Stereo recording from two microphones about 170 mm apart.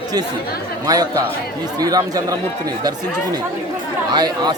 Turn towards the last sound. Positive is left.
turn(degrees=-25)  # may be behind; listen again after turning